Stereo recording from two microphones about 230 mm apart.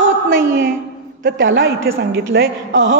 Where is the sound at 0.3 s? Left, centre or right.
Right.